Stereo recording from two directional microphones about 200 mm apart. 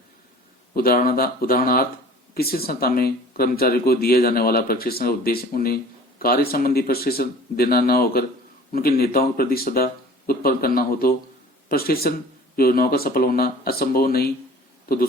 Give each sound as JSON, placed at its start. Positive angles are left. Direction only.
{"t": 0.8, "sound": "speech", "side_deg": 45}